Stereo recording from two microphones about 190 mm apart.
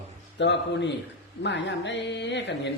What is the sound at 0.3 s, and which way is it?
A man's voice, 65° left (ahead or behind).